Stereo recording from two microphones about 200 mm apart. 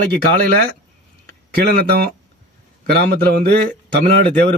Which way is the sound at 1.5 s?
50° right (ahead or behind).